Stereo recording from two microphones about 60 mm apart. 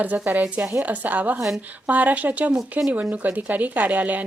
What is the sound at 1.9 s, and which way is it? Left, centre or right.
Speech, right.